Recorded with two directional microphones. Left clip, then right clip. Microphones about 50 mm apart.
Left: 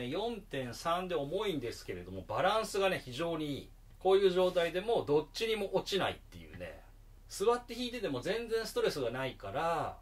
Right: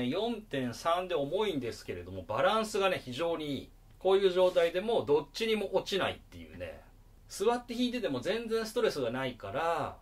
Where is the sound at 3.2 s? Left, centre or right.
Centre.